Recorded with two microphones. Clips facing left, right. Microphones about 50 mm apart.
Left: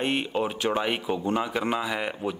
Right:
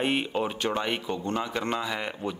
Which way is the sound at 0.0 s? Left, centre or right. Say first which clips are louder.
Even; centre.